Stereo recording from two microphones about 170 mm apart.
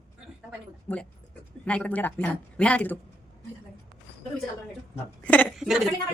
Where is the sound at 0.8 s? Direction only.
5° left (ahead or behind).